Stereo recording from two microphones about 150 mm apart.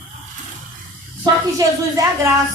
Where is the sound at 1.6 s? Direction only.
25° right (ahead or behind).